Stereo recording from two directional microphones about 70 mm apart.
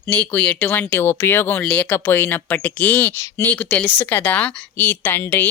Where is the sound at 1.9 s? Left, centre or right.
Left.